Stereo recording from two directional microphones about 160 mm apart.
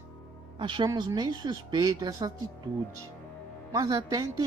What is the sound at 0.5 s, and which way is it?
Speech, 30° right (ahead or behind).